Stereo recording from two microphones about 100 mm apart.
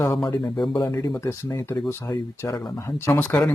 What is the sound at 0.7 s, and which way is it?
Speech, 35° left (ahead or behind).